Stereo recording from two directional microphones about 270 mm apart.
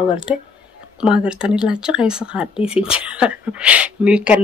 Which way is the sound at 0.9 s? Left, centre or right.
Centre.